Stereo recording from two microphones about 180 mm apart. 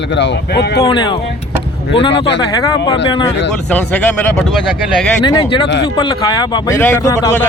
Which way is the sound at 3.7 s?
10° left (ahead or behind).